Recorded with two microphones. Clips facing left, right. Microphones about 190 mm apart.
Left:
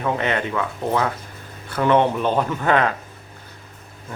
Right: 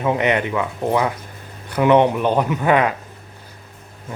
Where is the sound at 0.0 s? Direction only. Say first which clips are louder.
Right 4 dB; 15° right (ahead or behind).